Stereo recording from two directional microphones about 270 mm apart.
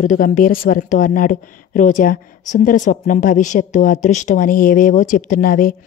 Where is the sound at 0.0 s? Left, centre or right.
Left.